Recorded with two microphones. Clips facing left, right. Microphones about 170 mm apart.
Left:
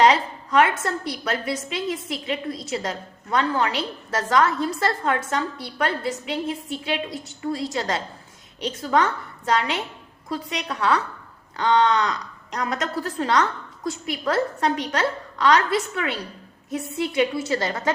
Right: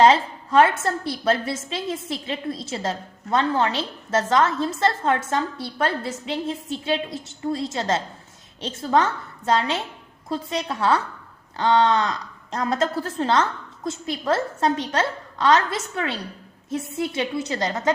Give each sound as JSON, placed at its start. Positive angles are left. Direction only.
{"t": 0.0, "sound": "a woman's voice", "side_deg": -30}